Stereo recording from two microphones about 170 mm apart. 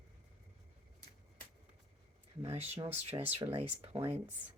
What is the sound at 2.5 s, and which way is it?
Speech, 40° right (ahead or behind).